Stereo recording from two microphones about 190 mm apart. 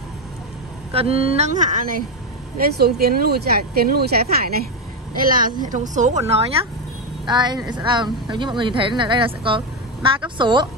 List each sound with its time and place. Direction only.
0.9 s speech: 30° right (ahead or behind)
7.2 s speech: 20° right (ahead or behind)